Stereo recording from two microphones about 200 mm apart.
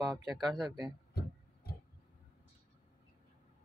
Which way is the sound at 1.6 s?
50° left (ahead or behind).